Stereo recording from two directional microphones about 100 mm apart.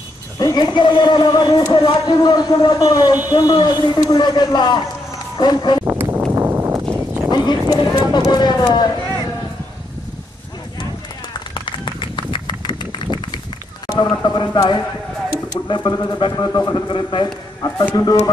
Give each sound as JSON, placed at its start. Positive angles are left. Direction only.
{"t": 0.4, "sound": "speech", "side_deg": 45}
{"t": 5.9, "sound": "a sound", "side_deg": -20}
{"t": 6.3, "sound": "clip-clop", "side_deg": -25}
{"t": 7.2, "sound": "speech", "side_deg": 45}
{"t": 11.6, "sound": "run", "side_deg": 55}
{"t": 14.1, "sound": "speech", "side_deg": 45}
{"t": 17.6, "sound": "speech", "side_deg": 40}